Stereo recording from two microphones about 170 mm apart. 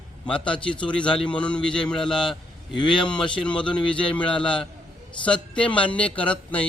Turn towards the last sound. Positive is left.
turn(degrees=10)  # may be behind; listen again after turning